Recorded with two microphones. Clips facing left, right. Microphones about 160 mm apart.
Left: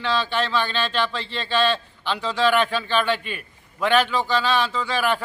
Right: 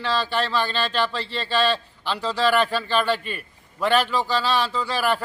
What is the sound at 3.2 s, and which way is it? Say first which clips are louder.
Speech: right 1 dB; 40° right (ahead or behind).